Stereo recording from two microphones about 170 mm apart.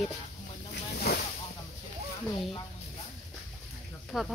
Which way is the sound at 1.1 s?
70° left (ahead or behind).